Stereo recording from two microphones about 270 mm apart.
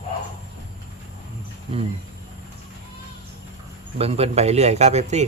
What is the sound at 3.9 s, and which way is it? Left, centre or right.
Speech, right.